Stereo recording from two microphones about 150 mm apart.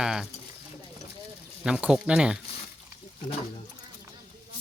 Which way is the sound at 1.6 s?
5° right (ahead or behind).